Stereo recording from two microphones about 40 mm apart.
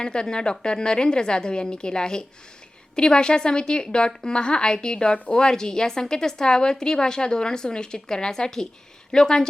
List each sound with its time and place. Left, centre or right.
0.0 s a woman's voice: left